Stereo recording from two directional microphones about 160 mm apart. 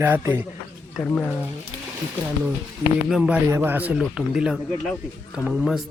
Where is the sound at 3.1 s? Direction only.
10° right (ahead or behind).